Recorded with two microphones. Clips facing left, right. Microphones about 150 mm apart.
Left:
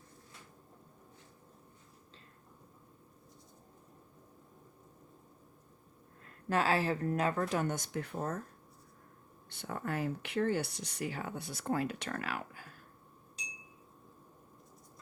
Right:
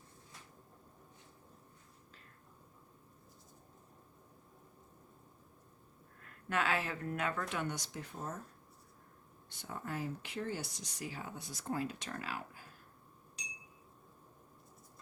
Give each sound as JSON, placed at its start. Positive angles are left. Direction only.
{"t": 6.2, "sound": "speech", "side_deg": 35}
{"t": 9.5, "sound": "speech", "side_deg": 65}